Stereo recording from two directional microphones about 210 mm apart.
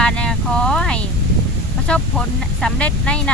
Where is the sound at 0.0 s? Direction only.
5° left (ahead or behind).